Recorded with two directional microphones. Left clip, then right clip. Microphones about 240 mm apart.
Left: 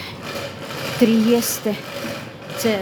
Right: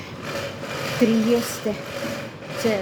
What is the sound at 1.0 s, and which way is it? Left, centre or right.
Speech, centre.